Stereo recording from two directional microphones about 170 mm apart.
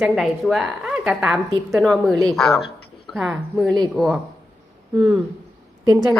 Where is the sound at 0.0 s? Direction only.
Centre (ahead or behind).